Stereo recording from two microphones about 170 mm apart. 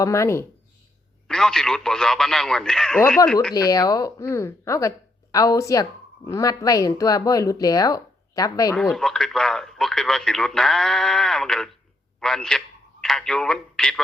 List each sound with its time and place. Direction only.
0.0 s speech: 15° left (ahead or behind)
1.3 s speech: 5° left (ahead or behind)
3.5 s speech: 20° left (ahead or behind)
8.7 s speech: 5° left (ahead or behind)